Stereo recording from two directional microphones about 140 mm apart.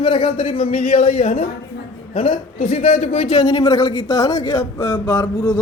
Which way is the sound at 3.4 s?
25° left (ahead or behind).